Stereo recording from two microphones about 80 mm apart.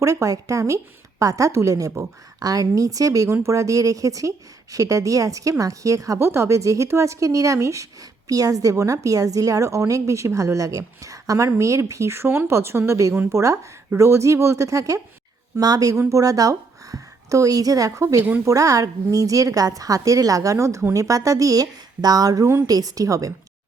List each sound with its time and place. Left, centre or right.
0.0 s a woman's voice: right
18.2 s speech: centre
18.4 s speech: right